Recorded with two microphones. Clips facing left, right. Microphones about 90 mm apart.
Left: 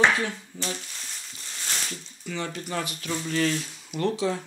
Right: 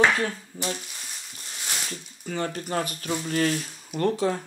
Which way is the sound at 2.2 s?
45° right (ahead or behind).